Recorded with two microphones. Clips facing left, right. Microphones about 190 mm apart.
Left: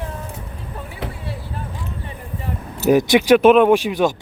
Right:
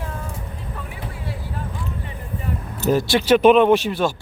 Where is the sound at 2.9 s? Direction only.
15° left (ahead or behind).